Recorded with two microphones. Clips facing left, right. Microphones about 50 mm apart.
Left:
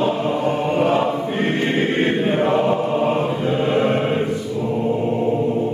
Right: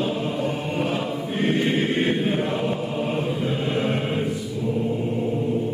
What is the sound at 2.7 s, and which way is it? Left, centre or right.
Chant, centre.